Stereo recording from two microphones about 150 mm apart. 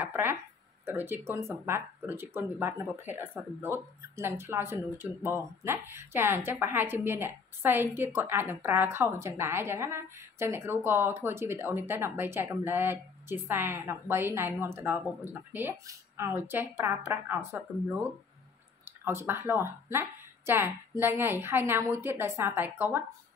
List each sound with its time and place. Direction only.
0.0 s speech: 15° right (ahead or behind)
19.0 s speech: 15° right (ahead or behind)